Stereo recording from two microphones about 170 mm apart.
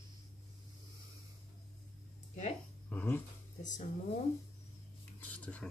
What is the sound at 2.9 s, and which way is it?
Speech, 10° left (ahead or behind).